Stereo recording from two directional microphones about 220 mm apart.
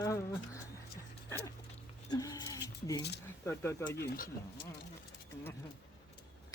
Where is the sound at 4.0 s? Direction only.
45° left (ahead or behind).